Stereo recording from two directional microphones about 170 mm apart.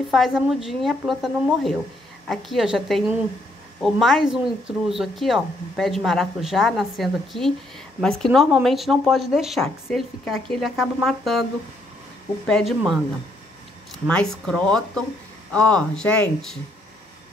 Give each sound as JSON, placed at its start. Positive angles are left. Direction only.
{"t": 0.1, "sound": "speech", "side_deg": 0}
{"t": 12.4, "sound": "speech", "side_deg": 5}